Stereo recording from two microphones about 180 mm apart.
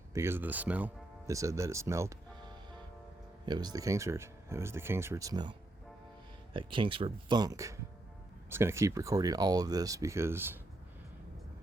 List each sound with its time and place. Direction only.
0.1 s speech: 15° right (ahead or behind)
3.4 s speech: 25° right (ahead or behind)